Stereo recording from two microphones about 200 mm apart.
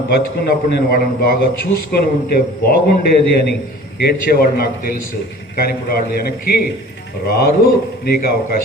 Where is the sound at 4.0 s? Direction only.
50° left (ahead or behind).